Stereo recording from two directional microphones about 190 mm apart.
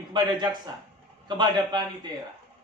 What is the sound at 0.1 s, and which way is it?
A man's voice, 25° right (ahead or behind).